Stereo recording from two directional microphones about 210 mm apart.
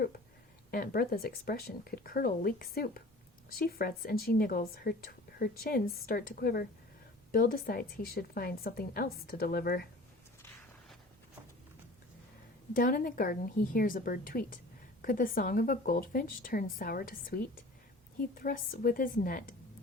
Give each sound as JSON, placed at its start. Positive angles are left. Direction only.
{"t": 0.7, "sound": "a woman's voice", "side_deg": 45}
{"t": 12.7, "sound": "a woman's voice", "side_deg": 40}